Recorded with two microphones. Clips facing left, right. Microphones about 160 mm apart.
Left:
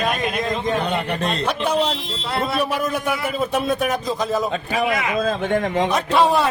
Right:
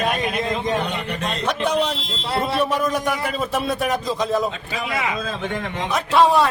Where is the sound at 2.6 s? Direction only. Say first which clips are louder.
Right 1 dB; 5° left (ahead or behind).